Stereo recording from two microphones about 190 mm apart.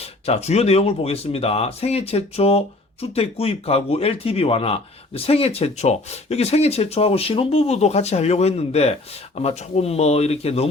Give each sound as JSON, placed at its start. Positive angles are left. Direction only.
{"t": 0.0, "sound": "speech", "side_deg": 35}